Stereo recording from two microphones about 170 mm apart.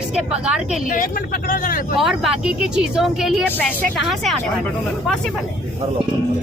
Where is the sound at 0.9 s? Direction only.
55° left (ahead or behind).